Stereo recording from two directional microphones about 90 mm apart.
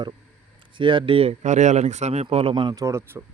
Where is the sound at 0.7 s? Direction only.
65° right (ahead or behind).